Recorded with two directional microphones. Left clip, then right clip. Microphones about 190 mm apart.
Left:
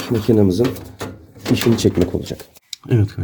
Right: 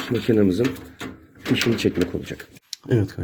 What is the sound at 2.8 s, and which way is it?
Speech, 15° left (ahead or behind).